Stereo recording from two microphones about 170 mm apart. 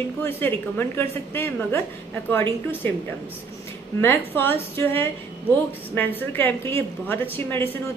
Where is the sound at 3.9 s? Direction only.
10° left (ahead or behind).